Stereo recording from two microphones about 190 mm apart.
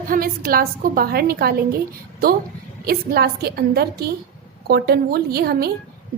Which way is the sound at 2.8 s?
55° right (ahead or behind).